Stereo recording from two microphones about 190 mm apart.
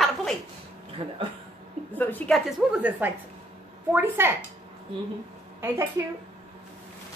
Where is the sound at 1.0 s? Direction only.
30° right (ahead or behind).